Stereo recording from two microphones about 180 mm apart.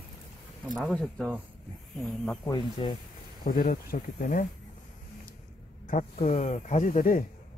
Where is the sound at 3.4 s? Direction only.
50° left (ahead or behind).